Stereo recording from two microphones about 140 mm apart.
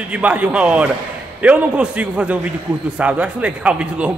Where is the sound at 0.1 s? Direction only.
10° right (ahead or behind).